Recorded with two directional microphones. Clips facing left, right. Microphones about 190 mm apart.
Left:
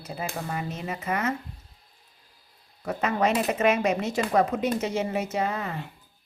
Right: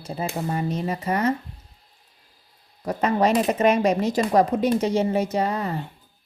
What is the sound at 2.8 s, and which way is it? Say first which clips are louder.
Speech: right 4 dB; 35° right (ahead or behind).